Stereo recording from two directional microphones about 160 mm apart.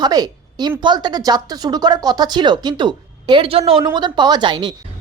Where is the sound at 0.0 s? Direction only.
25° right (ahead or behind).